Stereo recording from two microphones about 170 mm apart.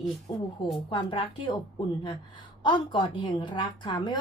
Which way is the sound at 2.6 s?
25° left (ahead or behind).